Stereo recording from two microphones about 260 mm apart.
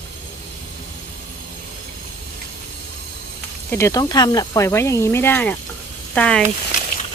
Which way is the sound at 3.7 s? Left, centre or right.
Centre.